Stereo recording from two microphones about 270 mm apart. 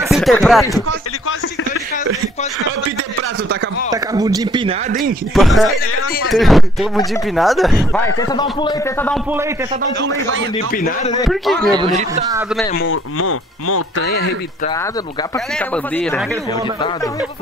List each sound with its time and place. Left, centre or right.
0.1 s speech: centre
3.9 s speech: centre
5.3 s speech: centre
11.2 s speech: centre
11.7 s speech: centre
13.2 s speech: left
14.0 s speech: left
15.7 s speech: centre